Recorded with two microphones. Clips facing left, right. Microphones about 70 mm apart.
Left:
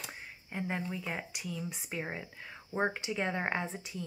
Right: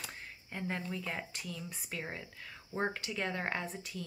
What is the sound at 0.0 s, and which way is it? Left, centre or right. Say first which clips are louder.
Speech: left 1 dB; centre.